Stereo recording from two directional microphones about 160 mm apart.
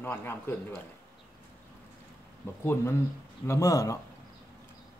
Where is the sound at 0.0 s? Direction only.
15° left (ahead or behind).